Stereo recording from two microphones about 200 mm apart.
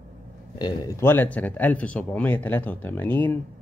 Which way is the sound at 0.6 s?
20° left (ahead or behind).